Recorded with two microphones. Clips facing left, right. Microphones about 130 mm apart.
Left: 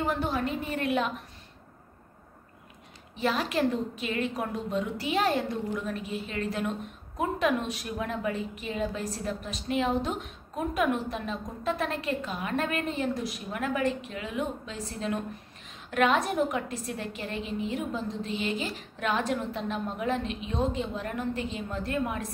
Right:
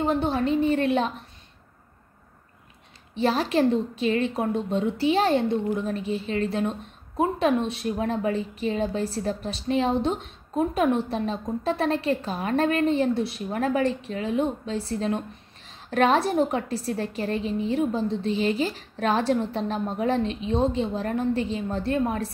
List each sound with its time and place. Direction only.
0.0 s a woman's voice: 25° right (ahead or behind)
3.2 s a woman's voice: 30° right (ahead or behind)